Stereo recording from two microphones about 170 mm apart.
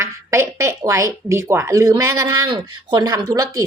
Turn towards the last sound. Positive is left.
turn(degrees=-20)  # may be behind; listen again after turning